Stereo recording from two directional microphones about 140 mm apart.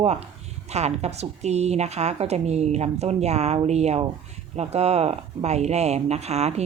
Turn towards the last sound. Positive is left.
turn(degrees=-50)  # may be behind; listen again after turning